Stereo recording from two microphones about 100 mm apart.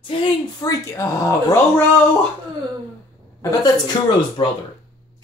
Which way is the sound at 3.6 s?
45° left (ahead or behind).